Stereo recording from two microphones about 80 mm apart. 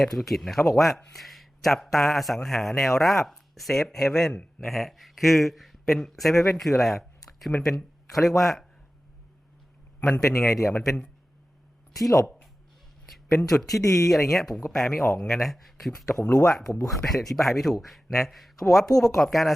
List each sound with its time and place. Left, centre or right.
0.0 s speech: centre
10.2 s speech: left
10.5 s speech: centre
13.1 s speech: centre
13.8 s speech: left
14.1 s speech: centre